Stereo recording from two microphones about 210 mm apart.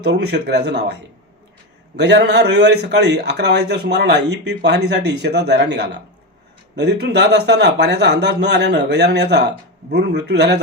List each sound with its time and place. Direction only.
0.0 s a man's voice: 55° right (ahead or behind)
2.0 s a man's voice: 55° right (ahead or behind)